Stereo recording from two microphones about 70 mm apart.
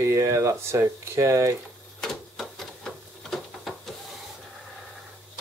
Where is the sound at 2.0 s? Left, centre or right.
Centre.